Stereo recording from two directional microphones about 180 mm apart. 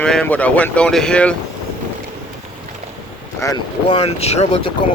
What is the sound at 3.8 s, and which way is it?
Speech, 35° left (ahead or behind).